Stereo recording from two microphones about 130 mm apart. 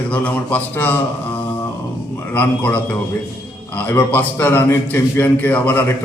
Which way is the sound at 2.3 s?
10° left (ahead or behind).